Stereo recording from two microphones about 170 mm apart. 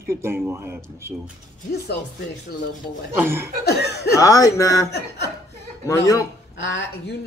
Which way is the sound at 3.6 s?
75° left (ahead or behind).